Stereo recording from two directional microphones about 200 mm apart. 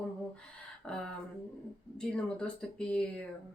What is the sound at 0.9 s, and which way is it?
Speech, 5° left (ahead or behind).